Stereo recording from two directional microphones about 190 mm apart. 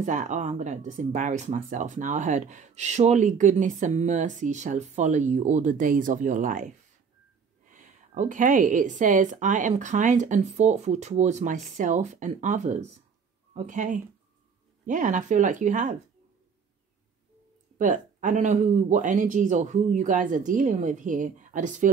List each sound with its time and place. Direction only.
0.0 s speech: 40° right (ahead or behind)
17.7 s speech: 40° right (ahead or behind)